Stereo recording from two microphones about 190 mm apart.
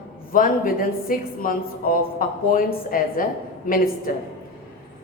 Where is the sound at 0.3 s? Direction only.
45° left (ahead or behind).